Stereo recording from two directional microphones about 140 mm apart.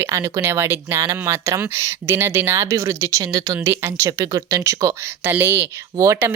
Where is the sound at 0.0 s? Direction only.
20° right (ahead or behind).